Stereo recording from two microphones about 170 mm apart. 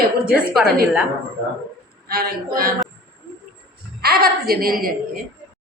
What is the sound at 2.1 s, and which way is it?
Speech, 65° right (ahead or behind).